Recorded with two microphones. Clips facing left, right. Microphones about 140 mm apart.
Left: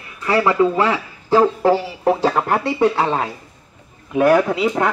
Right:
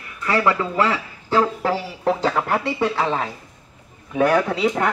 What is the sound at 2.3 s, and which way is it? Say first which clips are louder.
Speech: left 3 dB; 30° left (ahead or behind).